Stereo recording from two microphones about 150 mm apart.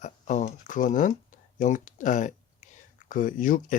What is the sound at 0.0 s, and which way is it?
Speech, 55° left (ahead or behind).